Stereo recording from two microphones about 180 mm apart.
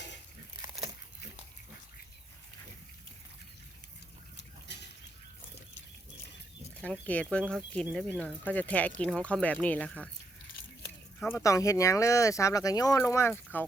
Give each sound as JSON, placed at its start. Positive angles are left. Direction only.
{"t": 0.6, "sound": "a sound", "side_deg": -25}
{"t": 7.1, "sound": "speech", "side_deg": 5}
{"t": 11.2, "sound": "speech", "side_deg": 10}